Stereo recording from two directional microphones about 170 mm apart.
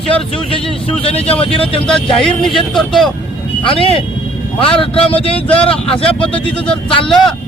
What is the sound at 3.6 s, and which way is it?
Speech, 35° left (ahead or behind).